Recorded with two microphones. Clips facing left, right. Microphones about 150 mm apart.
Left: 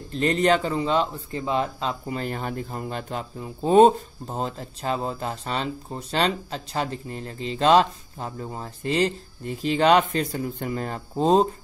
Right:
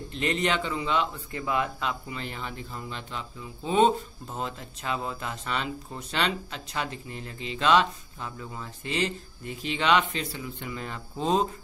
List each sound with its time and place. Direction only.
0.1 s speech: 40° left (ahead or behind)
2.0 s speech: 45° left (ahead or behind)